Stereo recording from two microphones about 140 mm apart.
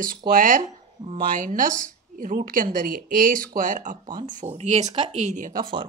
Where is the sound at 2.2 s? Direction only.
85° right.